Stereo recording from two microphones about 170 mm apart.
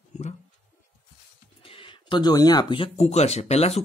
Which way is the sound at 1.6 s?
30° left (ahead or behind).